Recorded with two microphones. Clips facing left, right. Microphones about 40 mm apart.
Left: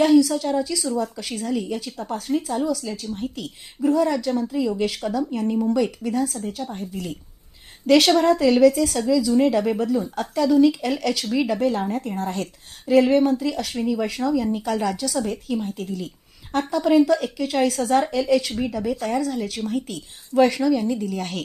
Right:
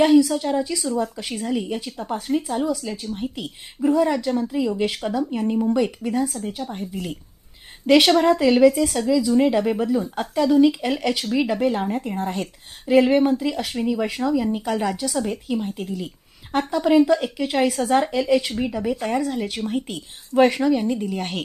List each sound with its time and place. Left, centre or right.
0.0 s speech: centre
3.8 s speech: centre